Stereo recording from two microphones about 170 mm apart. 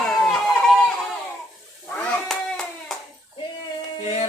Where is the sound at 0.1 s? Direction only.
Centre (ahead or behind).